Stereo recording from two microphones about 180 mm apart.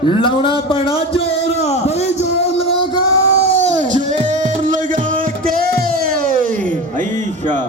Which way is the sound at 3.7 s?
40° right (ahead or behind).